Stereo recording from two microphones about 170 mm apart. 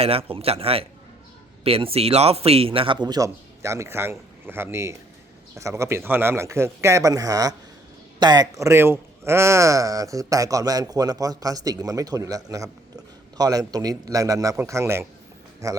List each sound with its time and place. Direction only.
0.0 s a man's voice: 35° right (ahead or behind); by 15.8 s 20° right (ahead or behind)